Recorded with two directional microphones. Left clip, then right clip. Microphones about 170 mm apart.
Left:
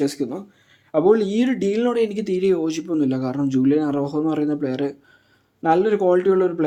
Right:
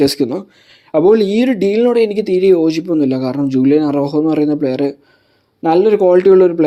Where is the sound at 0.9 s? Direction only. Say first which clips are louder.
Right 6 dB; 40° right (ahead or behind).